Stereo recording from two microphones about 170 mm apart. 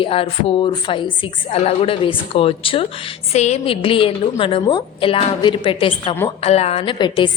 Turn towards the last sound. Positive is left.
turn(degrees=30)  # may be behind; listen again after turning